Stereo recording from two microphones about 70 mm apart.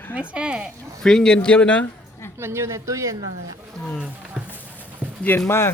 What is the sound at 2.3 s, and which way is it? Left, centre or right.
Speech, right.